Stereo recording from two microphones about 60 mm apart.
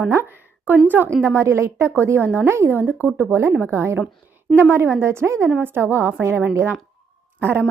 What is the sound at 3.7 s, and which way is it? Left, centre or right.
A woman's voice, right.